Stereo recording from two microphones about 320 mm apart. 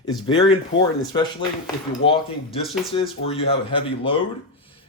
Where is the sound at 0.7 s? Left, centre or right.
Centre.